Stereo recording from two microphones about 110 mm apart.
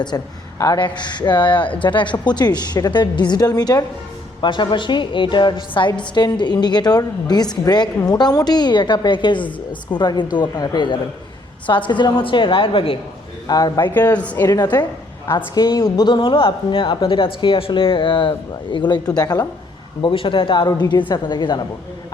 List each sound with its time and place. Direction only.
0.1 s a woman's voice: 30° left (ahead or behind)
0.8 s a woman's voice: 45° left (ahead or behind)
7.9 s a woman's voice: 25° left (ahead or behind)
8.2 s a woman's voice: 35° left (ahead or behind); by 13.0 s 55° left (ahead or behind)
13.5 s a woman's voice: 35° left (ahead or behind)
13.7 s speech: 15° left (ahead or behind)
14.4 s a woman's voice: 35° left (ahead or behind)
20.0 s a woman's voice: 50° left (ahead or behind)